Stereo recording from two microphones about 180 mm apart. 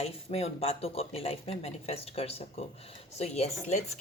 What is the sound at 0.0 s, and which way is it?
Speech, 35° left (ahead or behind).